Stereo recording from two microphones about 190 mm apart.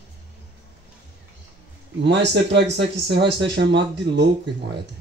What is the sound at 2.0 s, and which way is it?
Speech, 65° right (ahead or behind).